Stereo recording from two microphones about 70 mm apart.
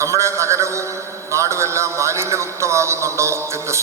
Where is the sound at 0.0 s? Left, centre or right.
Right.